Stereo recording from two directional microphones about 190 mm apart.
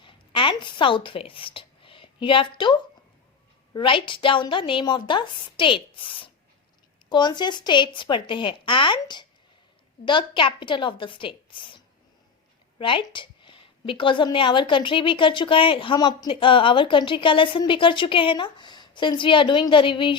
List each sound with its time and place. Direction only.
0.0 s a sound: 25° left (ahead or behind)
3.8 s a woman's voice: 25° left (ahead or behind)
12.8 s a woman's voice: 25° left (ahead or behind)